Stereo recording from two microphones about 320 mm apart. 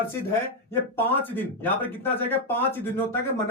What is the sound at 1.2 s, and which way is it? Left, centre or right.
Speech, centre.